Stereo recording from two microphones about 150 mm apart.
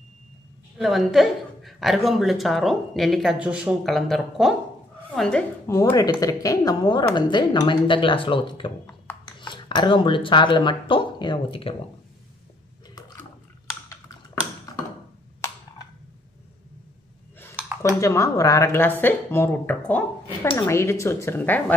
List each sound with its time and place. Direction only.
0.7 s a woman's voice: centre (ahead or behind)
5.7 s a woman's voice: 20° left (ahead or behind); by 11.7 s 35° left (ahead or behind)
17.9 s speech: 20° left (ahead or behind)